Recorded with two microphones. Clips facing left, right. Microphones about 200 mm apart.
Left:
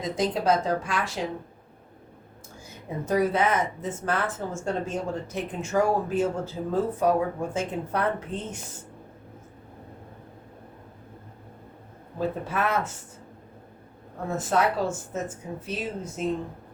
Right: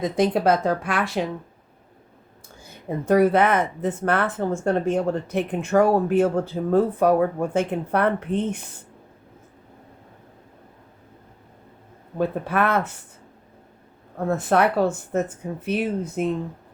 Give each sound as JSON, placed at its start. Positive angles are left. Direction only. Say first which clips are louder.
{"t": 0.0, "sound": "speech", "louder": "right 6 dB", "side_deg": -60}
{"t": 3.1, "sound": "speech", "louder": "right 6 dB", "side_deg": -60}
{"t": 12.1, "sound": "speech", "louder": "right 5 dB", "side_deg": -60}
{"t": 14.3, "sound": "speech", "louder": "right 5 dB", "side_deg": -60}